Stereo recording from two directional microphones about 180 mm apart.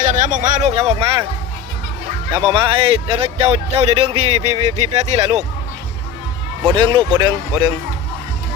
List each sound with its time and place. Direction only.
0.0 s a sound: 45° right (ahead or behind)
2.3 s speech: 25° right (ahead or behind)
6.7 s speech: 25° right (ahead or behind)